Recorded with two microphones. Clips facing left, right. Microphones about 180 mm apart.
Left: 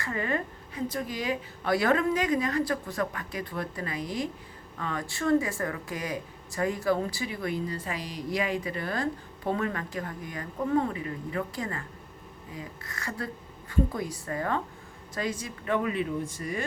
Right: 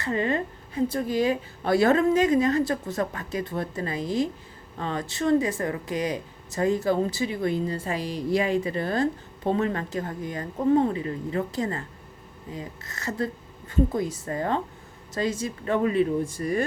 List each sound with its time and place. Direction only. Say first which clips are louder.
0.0 s speech: right 5 dB; 25° right (ahead or behind)